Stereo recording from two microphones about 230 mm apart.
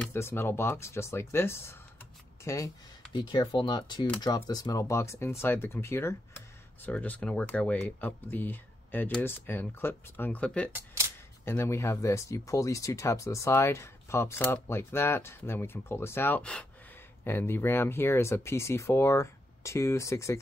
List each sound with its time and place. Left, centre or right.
0.0 s speech: centre